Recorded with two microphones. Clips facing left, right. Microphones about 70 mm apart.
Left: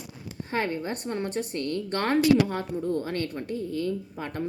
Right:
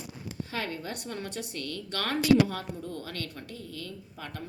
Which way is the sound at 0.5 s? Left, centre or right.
Left.